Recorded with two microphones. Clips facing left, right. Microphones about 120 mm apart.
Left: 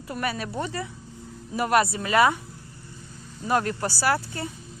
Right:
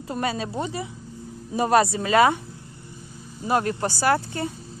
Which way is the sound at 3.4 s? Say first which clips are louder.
Right 2 dB; 20° right (ahead or behind).